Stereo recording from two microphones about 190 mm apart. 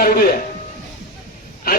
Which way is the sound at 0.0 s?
55° left (ahead or behind).